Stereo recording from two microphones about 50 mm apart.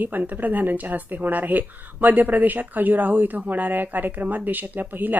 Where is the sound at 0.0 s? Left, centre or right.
Right.